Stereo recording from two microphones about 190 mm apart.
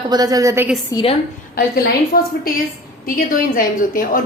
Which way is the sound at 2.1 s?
50° left (ahead or behind).